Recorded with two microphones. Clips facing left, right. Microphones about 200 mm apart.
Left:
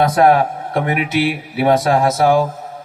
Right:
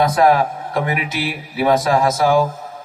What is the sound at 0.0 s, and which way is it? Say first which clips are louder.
A man's voice: left 2 dB; 60° left (ahead or behind).